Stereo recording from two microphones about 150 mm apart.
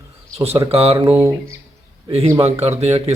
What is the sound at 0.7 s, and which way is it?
Speech, 40° right (ahead or behind).